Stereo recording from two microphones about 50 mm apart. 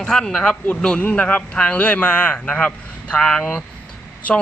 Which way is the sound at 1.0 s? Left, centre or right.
Left.